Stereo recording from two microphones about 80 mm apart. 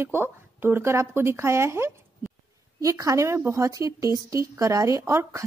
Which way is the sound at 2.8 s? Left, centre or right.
Right.